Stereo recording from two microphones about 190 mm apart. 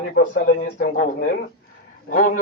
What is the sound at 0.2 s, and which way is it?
Speech, 60° left (ahead or behind).